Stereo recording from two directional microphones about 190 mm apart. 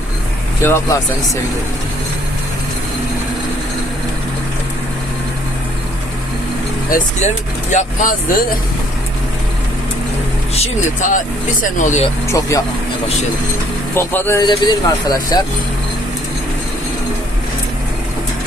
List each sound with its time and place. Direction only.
0.6 s speech: 15° left (ahead or behind)
6.9 s speech: 40° left (ahead or behind)
10.5 s speech: 35° left (ahead or behind)
12.3 s speech: 15° left (ahead or behind)
13.9 s speech: 10° left (ahead or behind)